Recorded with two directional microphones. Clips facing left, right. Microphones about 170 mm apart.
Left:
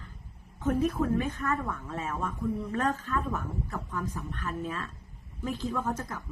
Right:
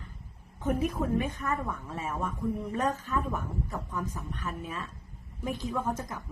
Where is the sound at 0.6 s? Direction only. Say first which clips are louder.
Left 2 dB; 15° right (ahead or behind).